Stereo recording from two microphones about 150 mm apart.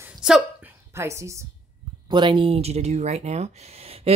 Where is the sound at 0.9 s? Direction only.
20° right (ahead or behind).